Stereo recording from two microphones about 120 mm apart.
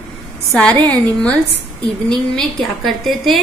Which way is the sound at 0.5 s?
10° left (ahead or behind).